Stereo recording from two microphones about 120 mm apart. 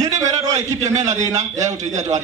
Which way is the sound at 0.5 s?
75° right (ahead or behind).